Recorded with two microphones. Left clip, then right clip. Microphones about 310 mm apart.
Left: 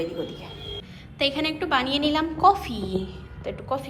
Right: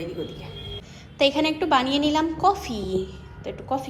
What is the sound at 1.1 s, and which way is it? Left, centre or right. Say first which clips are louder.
A woman's voice: right 4 dB; centre.